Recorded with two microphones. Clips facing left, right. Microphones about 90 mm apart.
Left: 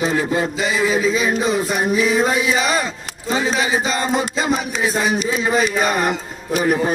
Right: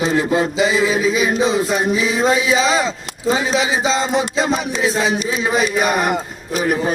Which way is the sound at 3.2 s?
20° right (ahead or behind).